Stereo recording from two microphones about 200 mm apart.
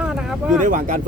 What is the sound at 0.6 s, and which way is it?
Speech, 40° right (ahead or behind).